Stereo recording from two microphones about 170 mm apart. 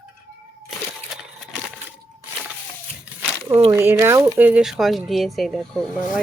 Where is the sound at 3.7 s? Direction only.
15° right (ahead or behind); by 6.2 s centre (ahead or behind).